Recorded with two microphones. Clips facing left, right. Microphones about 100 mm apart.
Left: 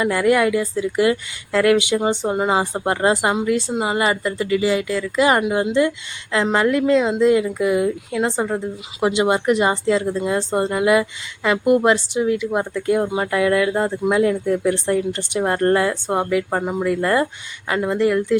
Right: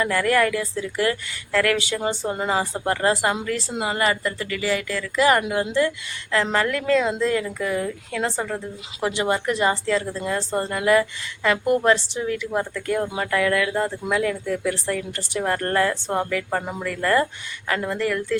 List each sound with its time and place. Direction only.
0.0 s speech: 15° left (ahead or behind)
2.6 s speech: 20° left (ahead or behind)